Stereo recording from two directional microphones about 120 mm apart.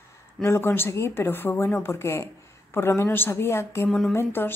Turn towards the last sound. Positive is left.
turn(degrees=20)  # may be behind; listen again after turning